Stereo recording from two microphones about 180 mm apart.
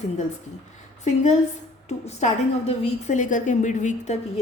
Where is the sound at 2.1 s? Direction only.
40° left (ahead or behind).